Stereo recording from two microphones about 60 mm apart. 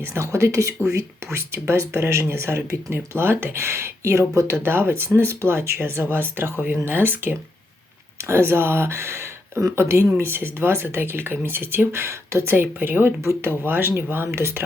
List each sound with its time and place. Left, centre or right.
0.1 s speech: right
12.5 s speech: right